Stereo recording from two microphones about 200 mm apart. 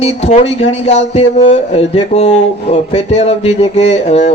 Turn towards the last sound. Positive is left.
turn(degrees=35)  # may be behind; listen again after turning